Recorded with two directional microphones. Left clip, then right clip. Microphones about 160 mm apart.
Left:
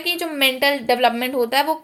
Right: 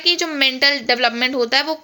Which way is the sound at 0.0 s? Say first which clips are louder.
Right 3 dB; 15° right (ahead or behind).